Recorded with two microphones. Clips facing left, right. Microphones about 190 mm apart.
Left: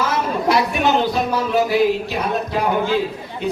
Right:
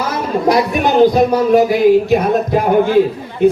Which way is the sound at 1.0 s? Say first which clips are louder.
Right 9 dB; 45° right (ahead or behind).